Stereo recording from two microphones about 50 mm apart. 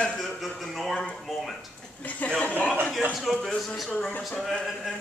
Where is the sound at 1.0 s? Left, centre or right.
Centre.